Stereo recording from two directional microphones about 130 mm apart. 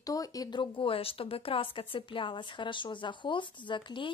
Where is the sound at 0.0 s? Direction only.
25° left (ahead or behind).